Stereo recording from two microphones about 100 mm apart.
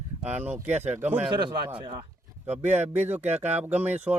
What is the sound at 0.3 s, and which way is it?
Speech, 15° right (ahead or behind).